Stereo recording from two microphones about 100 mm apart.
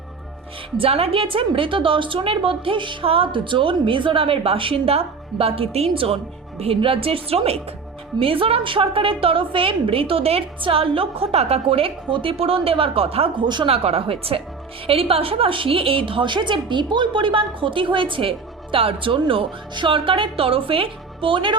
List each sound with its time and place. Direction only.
0.8 s a woman's voice: 80° right
8.2 s a woman's voice: 65° right (ahead or behind)
13.7 s a woman's voice: 85° right; by 21.6 s 55° right (ahead or behind)